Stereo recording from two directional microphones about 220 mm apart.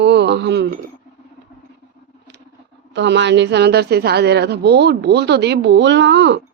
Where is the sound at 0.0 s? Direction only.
50° right (ahead or behind).